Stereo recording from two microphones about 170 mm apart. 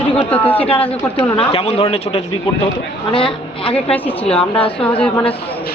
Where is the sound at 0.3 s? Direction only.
10° left (ahead or behind).